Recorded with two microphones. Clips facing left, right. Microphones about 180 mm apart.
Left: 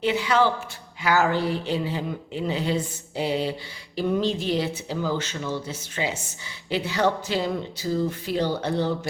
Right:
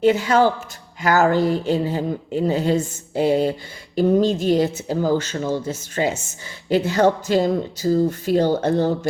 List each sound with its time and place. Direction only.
0.0 s speech: 45° right (ahead or behind)